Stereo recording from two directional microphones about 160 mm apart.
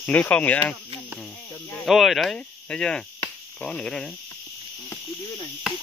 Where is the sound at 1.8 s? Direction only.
Centre (ahead or behind).